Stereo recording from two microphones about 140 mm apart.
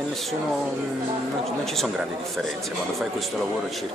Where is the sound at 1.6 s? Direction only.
Centre (ahead or behind).